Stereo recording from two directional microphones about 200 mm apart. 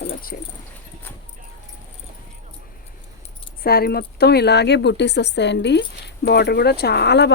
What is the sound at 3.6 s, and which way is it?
A woman's voice, 50° left (ahead or behind).